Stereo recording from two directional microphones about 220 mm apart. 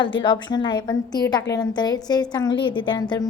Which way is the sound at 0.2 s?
20° left (ahead or behind).